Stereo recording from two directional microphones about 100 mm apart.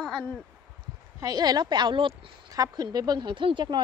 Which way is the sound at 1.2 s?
40° right (ahead or behind).